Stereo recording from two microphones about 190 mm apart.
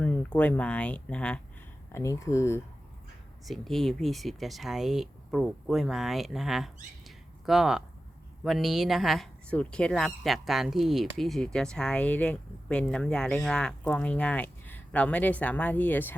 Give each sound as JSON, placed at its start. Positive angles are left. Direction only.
{"t": 0.0, "sound": "speech", "side_deg": 10}
{"t": 3.4, "sound": "speech", "side_deg": 0}